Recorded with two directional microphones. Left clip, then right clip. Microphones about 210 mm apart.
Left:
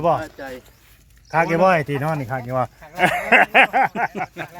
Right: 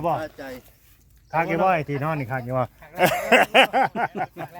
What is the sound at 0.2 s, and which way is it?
Speech, 45° right (ahead or behind).